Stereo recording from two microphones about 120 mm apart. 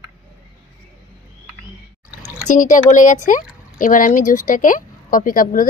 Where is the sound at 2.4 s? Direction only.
90° left.